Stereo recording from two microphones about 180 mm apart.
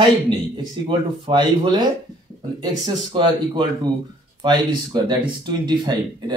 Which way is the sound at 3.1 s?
25° right (ahead or behind).